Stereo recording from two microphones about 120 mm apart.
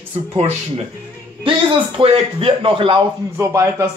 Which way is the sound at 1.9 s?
50° right (ahead or behind).